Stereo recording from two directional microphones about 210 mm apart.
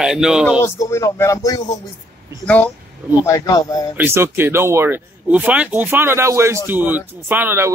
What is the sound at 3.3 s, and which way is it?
Speech, 20° left (ahead or behind).